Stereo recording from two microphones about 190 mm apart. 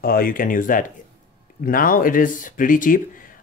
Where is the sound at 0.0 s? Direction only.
50° left (ahead or behind).